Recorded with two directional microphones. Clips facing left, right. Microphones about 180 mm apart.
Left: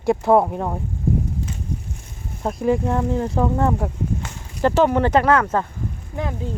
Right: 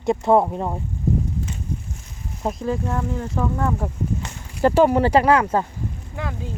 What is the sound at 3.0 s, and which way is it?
Speech, 35° left (ahead or behind).